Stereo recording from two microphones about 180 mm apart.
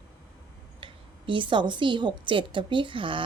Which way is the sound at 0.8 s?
25° right (ahead or behind).